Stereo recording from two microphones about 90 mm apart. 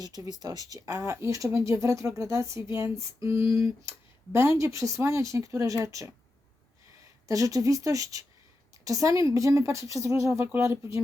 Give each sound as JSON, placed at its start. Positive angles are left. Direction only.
{"t": 0.2, "sound": "speech", "side_deg": -45}
{"t": 7.3, "sound": "speech", "side_deg": -40}